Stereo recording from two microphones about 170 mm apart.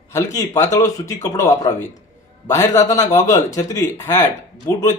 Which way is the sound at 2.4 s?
20° left (ahead or behind).